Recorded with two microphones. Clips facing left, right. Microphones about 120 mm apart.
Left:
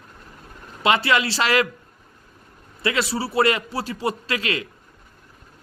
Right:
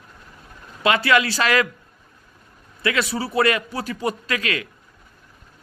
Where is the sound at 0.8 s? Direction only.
25° left (ahead or behind).